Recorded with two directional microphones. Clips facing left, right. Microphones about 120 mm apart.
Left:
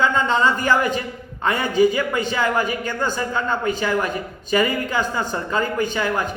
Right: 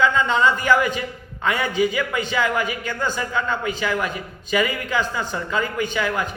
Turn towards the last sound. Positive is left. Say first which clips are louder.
# left 2 dB
turn(degrees=40)  # may be behind; listen again after turning